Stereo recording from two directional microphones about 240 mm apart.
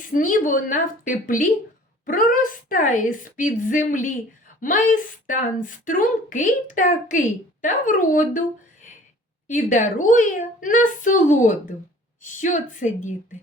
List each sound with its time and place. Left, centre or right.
0.1 s a woman's voice: left
9.5 s a woman's voice: left